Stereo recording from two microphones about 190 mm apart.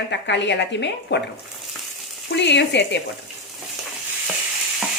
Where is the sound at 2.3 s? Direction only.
65° left (ahead or behind).